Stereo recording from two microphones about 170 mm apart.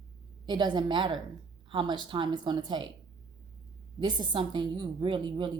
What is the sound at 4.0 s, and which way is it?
Speech, 25° right (ahead or behind).